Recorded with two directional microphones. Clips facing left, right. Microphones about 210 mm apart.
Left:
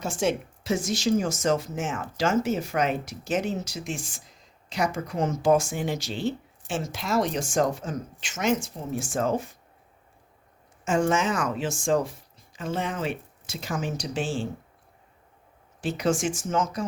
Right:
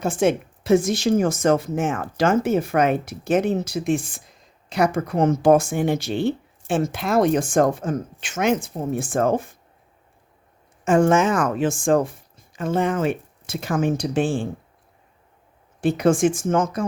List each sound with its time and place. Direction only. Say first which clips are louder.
0.0 s a woman's voice: right 6 dB; 55° right (ahead or behind)
10.8 s speech: right 7 dB; 55° right (ahead or behind)
15.8 s a woman's voice: right 8 dB; 55° right (ahead or behind)